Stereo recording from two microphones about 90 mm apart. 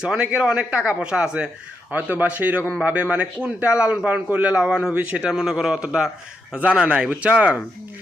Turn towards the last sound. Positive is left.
turn(degrees=-15)  # may be behind; listen again after turning